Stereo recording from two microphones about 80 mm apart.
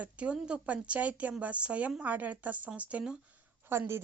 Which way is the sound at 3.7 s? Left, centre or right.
Right.